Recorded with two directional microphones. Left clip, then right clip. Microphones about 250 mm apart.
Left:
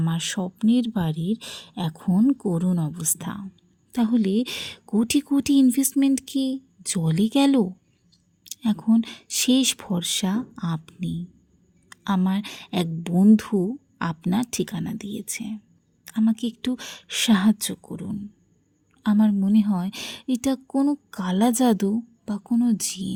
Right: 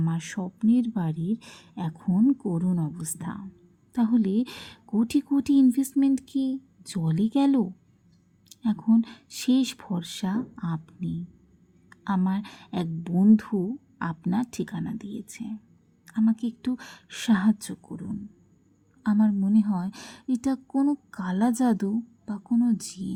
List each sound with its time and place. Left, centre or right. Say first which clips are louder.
0.0 s a woman's voice: left 5 dB; left